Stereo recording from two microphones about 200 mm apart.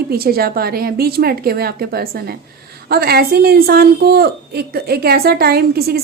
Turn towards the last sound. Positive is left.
turn(degrees=-50)  # may be behind; listen again after turning